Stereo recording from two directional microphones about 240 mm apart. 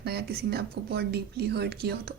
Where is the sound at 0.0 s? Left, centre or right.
Right.